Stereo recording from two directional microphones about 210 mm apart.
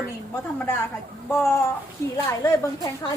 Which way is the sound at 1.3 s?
10° left (ahead or behind).